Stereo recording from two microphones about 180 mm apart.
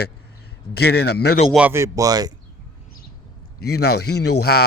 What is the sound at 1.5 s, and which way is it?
Speech, 5° right (ahead or behind).